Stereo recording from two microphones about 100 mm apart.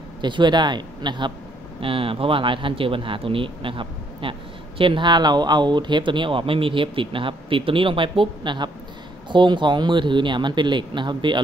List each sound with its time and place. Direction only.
0.2 s speech: 50° right (ahead or behind)
1.8 s speech: 65° right (ahead or behind)